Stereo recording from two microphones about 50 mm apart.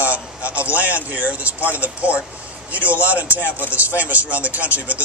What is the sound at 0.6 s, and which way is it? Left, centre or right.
A man's voice, right.